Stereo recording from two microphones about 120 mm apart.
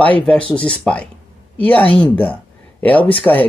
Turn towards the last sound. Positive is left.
turn(degrees=15)  # may be behind; listen again after turning